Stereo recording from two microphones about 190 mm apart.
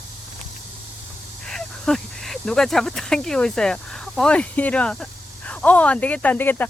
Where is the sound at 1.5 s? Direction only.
5° left (ahead or behind).